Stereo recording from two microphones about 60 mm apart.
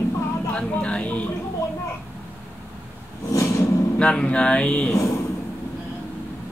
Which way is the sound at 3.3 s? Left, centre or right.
Left.